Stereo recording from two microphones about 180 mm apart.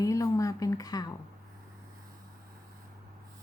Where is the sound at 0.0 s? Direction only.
15° left (ahead or behind).